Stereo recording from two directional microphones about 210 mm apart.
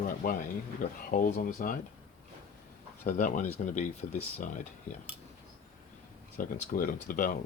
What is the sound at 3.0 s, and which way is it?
Speech, 40° left (ahead or behind).